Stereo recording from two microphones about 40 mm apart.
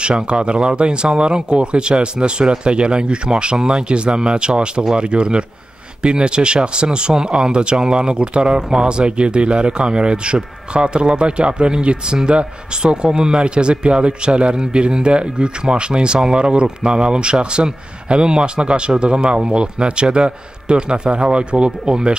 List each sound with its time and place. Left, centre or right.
0.0 s speech: right